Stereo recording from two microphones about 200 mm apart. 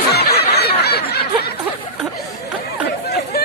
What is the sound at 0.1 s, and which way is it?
Snicker, 55° left (ahead or behind).